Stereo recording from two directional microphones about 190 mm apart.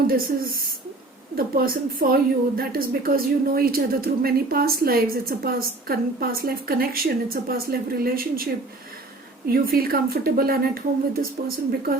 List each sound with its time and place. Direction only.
0.1 s a woman's voice: 50° right (ahead or behind)
9.5 s a woman's voice: 50° right (ahead or behind)